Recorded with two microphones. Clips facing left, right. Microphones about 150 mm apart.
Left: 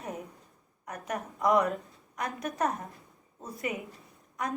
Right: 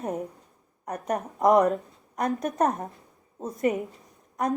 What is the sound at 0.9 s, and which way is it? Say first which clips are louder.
A woman's voice: right 7 dB; 40° right (ahead or behind).